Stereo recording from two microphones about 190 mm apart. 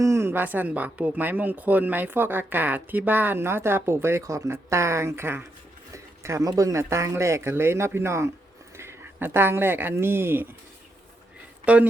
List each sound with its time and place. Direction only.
0.0 s speech: 15° right (ahead or behind)
11.6 s speech: 5° right (ahead or behind)